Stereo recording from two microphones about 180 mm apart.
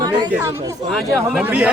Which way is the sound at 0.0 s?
25° right (ahead or behind).